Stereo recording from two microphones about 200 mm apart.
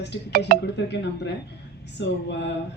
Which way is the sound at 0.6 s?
60° left (ahead or behind).